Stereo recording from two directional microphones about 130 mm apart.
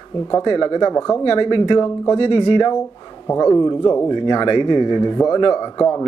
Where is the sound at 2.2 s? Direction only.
50° left (ahead or behind).